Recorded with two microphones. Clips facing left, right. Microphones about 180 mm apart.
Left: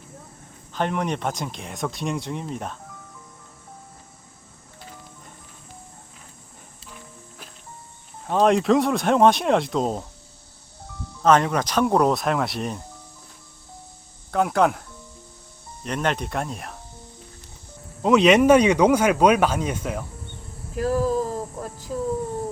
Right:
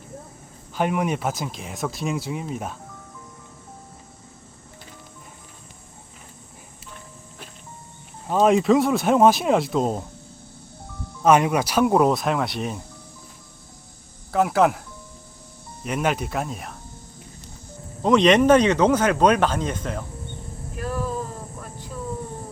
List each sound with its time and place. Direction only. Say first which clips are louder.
0.7 s speech: right 2 dB; 10° right (ahead or behind)
8.3 s speech: right 1 dB; 5° right (ahead or behind)
11.2 s speech: right 1 dB; 10° right (ahead or behind)
14.3 s speech: right 1 dB; 5° right (ahead or behind)
15.8 s speech: right 1 dB; 5° right (ahead or behind)
18.0 s speech: left 1 dB; 5° left (ahead or behind)
20.7 s a sound: left 6 dB; 35° left (ahead or behind)